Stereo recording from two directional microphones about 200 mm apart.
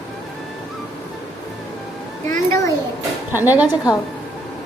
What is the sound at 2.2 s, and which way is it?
Speech, 15° left (ahead or behind).